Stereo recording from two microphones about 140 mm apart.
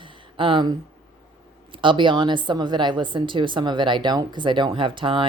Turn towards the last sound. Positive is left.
turn(degrees=-35)  # may be behind; listen again after turning